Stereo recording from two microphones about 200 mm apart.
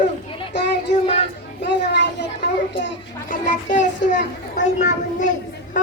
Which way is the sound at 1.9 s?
60° left (ahead or behind).